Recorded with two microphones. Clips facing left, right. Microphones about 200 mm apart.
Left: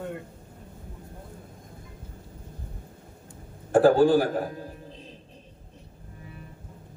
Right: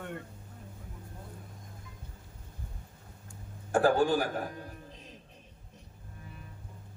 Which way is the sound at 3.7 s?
35° left (ahead or behind).